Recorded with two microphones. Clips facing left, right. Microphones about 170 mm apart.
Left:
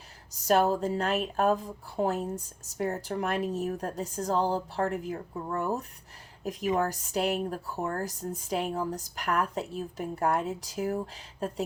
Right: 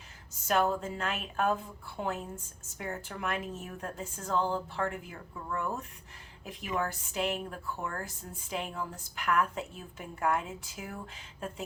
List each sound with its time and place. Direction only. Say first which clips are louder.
0.3 s speech: left 4 dB; 35° left (ahead or behind)